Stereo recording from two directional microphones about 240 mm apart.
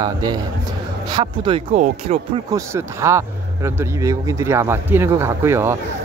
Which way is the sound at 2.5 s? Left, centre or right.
Centre.